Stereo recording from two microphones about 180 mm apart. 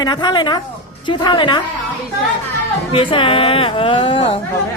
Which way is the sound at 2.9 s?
30° left (ahead or behind).